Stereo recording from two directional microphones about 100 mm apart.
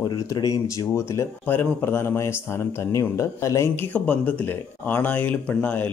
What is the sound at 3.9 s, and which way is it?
A man's voice, 15° left (ahead or behind).